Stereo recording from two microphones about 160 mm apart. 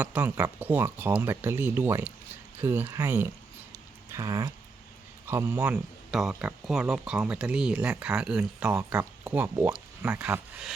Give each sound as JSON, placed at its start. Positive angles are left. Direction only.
{"t": 0.0, "sound": "speech", "side_deg": -10}